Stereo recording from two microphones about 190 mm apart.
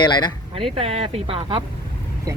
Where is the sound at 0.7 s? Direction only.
30° right (ahead or behind).